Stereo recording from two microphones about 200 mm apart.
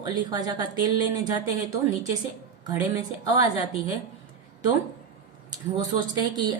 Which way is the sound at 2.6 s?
20° right (ahead or behind).